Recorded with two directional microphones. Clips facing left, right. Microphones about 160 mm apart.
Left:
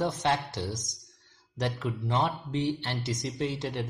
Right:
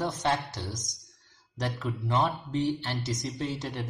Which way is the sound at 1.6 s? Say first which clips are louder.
Left 1 dB; 30° left (ahead or behind).